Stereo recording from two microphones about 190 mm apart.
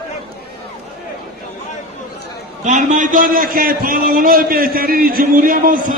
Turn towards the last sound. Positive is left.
turn(degrees=-45)  # may be behind; listen again after turning